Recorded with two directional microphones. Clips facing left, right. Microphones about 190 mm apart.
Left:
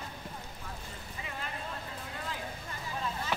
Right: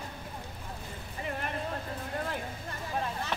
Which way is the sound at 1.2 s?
55° right (ahead or behind).